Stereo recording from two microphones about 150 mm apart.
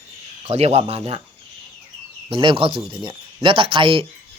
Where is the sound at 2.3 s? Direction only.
40° right (ahead or behind).